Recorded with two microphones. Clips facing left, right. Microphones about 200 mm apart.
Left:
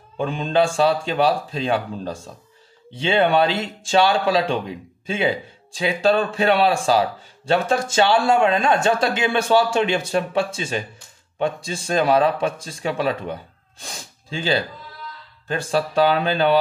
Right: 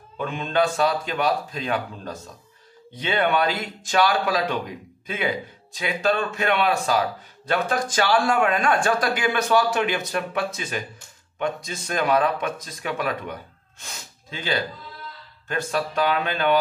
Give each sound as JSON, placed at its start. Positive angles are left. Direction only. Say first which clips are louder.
{"t": 0.2, "sound": "speech", "louder": "left 3 dB", "side_deg": 30}